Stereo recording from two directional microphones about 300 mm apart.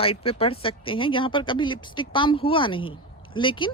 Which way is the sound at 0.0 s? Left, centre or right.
Centre.